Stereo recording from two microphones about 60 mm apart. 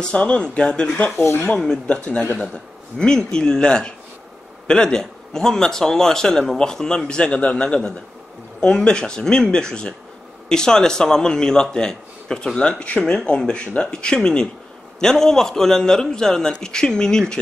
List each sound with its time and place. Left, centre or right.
0.0 s a man's voice: centre
1.2 s speech: left
1.5 s a man's voice: centre
3.0 s a man's voice: centre